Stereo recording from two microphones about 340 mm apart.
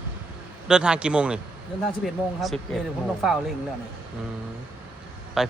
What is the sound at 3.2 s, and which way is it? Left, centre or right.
Speech, centre.